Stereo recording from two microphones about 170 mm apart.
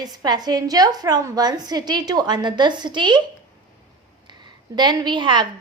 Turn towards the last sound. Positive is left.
turn(degrees=-25)  # may be behind; listen again after turning